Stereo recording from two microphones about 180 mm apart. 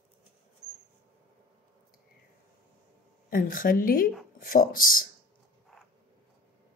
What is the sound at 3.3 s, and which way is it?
Speech, 50° left (ahead or behind).